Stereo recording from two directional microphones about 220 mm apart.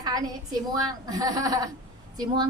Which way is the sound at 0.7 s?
15° right (ahead or behind).